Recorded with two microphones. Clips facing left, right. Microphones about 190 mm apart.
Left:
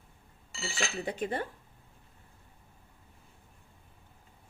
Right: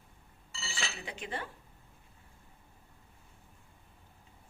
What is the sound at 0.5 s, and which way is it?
Speech, 50° left (ahead or behind).